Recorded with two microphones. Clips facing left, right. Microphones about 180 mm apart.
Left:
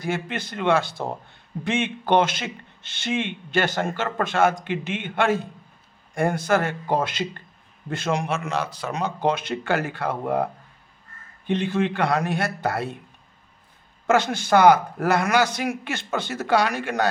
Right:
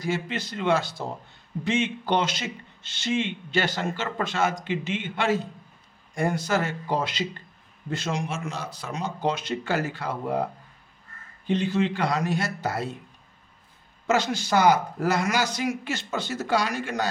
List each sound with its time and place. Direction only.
0.0 s a man's voice: 55° left (ahead or behind)
14.1 s a man's voice: 55° left (ahead or behind)